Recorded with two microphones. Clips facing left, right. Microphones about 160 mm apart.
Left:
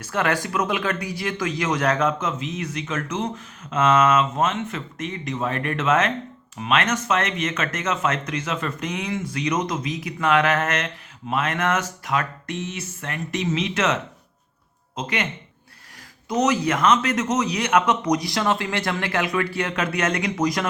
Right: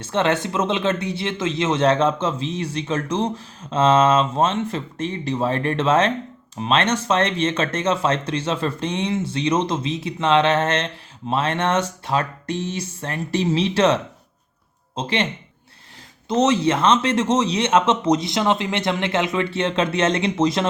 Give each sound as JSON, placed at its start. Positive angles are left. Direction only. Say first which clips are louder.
{"t": 0.0, "sound": "speech", "louder": "right 3 dB", "side_deg": -25}
{"t": 16.3, "sound": "speech", "louder": "right 3 dB", "side_deg": -25}